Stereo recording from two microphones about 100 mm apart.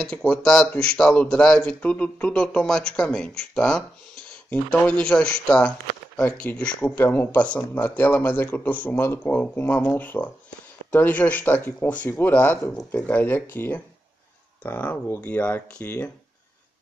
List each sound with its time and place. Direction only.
0.0 s speech: 10° left (ahead or behind)